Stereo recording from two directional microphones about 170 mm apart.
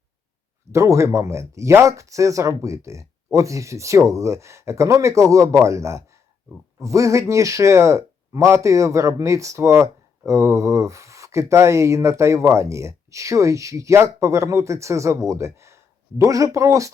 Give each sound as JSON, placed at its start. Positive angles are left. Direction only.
{"t": 0.7, "sound": "speech", "side_deg": -15}